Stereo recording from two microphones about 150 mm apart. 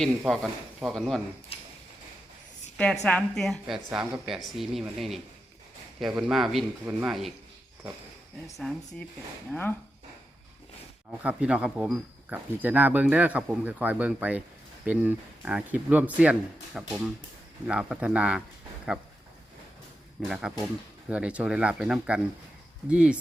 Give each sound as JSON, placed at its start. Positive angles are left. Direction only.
{"t": 0.8, "sound": "speech", "side_deg": 0}
{"t": 1.5, "sound": "a sound", "side_deg": 40}
{"t": 2.7, "sound": "speech", "side_deg": 5}
{"t": 8.6, "sound": "speech", "side_deg": 0}
{"t": 11.1, "sound": "speech", "side_deg": -10}
{"t": 20.2, "sound": "speech", "side_deg": -5}